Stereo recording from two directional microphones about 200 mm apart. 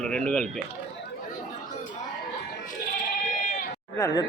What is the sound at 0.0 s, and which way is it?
Speech, 5° left (ahead or behind).